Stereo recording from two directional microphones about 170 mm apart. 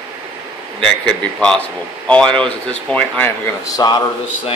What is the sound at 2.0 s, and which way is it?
Speech, 5° left (ahead or behind).